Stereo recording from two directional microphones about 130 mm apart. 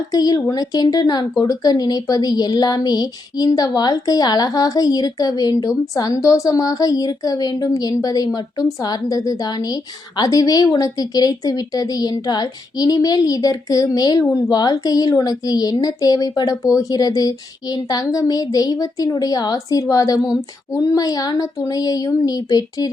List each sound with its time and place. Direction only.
0.1 s speech: 30° left (ahead or behind)